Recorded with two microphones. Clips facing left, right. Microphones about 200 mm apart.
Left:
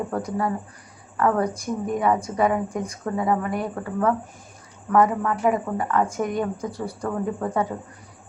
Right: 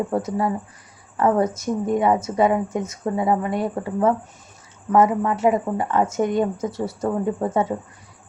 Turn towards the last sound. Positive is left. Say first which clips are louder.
# right 3 dB
turn(degrees=-25)  # may be behind; listen again after turning